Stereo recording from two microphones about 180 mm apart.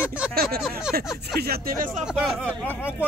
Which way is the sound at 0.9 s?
60° right (ahead or behind).